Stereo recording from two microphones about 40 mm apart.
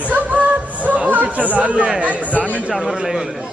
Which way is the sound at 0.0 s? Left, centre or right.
Right.